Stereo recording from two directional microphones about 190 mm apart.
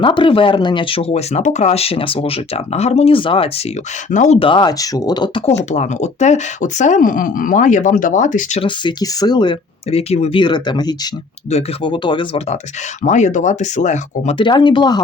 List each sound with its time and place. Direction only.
0.0 s speech: 25° left (ahead or behind)
5.5 s speech: 35° left (ahead or behind)
8.6 s speech: 25° left (ahead or behind)
13.0 s speech: 40° left (ahead or behind)
14.3 s speech: 25° left (ahead or behind)